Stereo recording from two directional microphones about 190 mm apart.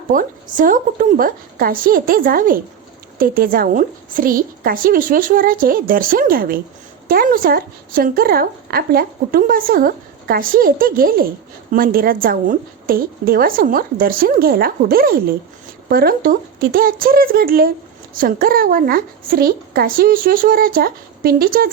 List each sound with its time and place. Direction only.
0.1 s speech: 45° right (ahead or behind)